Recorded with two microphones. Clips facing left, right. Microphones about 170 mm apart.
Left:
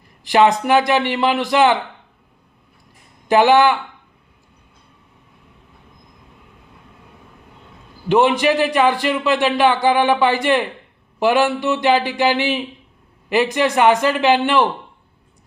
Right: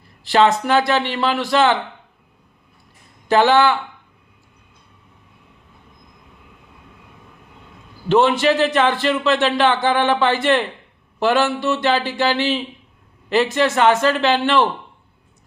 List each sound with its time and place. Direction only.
0.3 s a man's voice: 15° left (ahead or behind)
3.2 s a man's voice: 15° left (ahead or behind)
8.0 s a man's voice: 15° left (ahead or behind)